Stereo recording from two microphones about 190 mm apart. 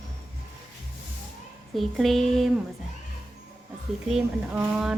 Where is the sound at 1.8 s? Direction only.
Centre (ahead or behind).